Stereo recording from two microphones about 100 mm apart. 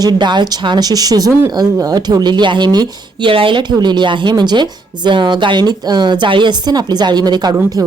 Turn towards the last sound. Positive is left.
turn(degrees=-35)  # may be behind; listen again after turning